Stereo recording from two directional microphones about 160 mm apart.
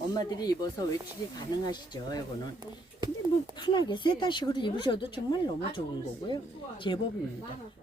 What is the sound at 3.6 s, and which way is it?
Speech, 30° left (ahead or behind).